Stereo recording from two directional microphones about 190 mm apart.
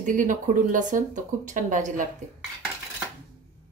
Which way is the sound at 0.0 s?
45° right (ahead or behind).